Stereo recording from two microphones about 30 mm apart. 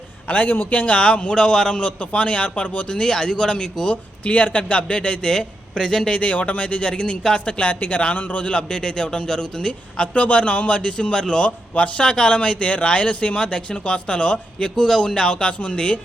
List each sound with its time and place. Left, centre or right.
0.3 s a man's voice: left
0.9 s a man's voice: left
1.3 s a man's voice: left
2.0 s speech: left
3.0 s a man's voice: left
4.2 s a man's voice: left
5.8 s speech: centre
6.1 s a man's voice: left
8.4 s a man's voice: left
10.2 s a man's voice: left
11.4 s a man's voice: left
14.8 s a man's voice: left